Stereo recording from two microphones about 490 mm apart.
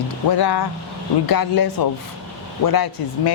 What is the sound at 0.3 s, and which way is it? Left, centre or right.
A woman's voice, left.